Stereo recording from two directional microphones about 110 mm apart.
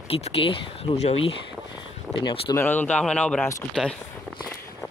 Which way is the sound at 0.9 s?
65° left (ahead or behind).